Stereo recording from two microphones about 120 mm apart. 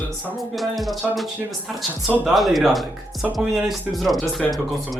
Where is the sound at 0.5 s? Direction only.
Centre (ahead or behind).